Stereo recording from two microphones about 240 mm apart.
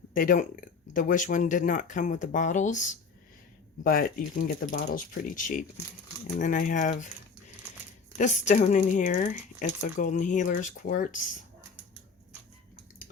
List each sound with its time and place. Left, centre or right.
0.1 s speech: left
4.4 s speech: left
8.2 s speech: left